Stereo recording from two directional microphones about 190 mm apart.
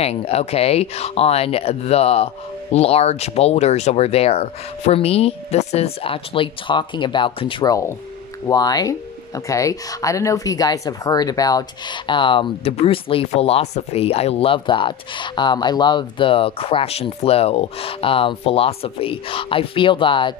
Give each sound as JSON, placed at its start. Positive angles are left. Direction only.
{"t": 0.0, "sound": "speech", "side_deg": 35}